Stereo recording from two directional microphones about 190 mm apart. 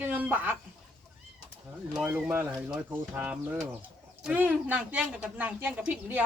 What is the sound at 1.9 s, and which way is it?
Speech, 5° right (ahead or behind).